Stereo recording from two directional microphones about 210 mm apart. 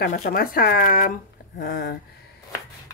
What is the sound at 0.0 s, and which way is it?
Speech, 45° left (ahead or behind).